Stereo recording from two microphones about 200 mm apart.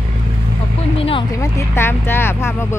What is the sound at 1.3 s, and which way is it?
Speech, 15° left (ahead or behind).